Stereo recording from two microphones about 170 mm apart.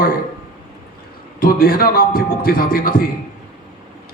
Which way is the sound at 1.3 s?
60° left (ahead or behind).